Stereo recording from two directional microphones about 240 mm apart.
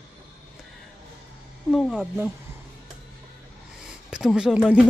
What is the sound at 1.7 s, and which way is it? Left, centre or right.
Speech, centre.